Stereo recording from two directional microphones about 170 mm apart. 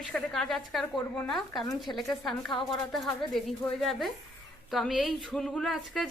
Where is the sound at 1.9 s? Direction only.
15° left (ahead or behind).